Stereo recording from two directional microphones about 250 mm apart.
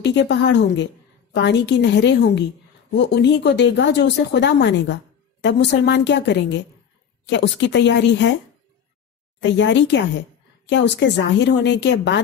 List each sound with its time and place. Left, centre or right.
0.0 s speech: left
9.4 s speech: left